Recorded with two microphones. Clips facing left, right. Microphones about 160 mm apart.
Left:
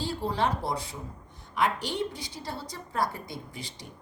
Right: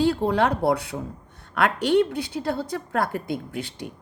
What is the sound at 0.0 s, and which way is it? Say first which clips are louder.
A woman's voice: right 8 dB; 65° right (ahead or behind).